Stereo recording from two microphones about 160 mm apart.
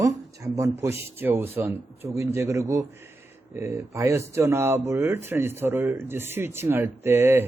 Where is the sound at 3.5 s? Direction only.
20° right (ahead or behind).